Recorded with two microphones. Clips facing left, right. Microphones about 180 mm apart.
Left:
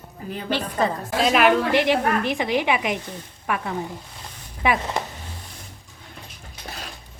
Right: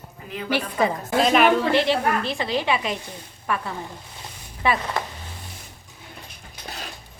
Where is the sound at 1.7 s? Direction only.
15° left (ahead or behind).